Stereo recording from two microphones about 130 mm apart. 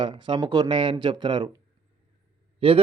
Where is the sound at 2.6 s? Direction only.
45° right (ahead or behind).